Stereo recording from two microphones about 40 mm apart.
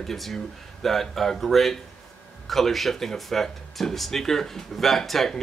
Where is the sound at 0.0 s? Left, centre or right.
Centre.